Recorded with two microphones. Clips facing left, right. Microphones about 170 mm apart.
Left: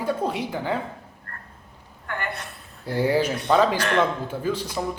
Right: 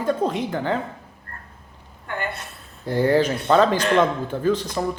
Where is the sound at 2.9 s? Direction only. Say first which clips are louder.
Right 3 dB; 10° left (ahead or behind).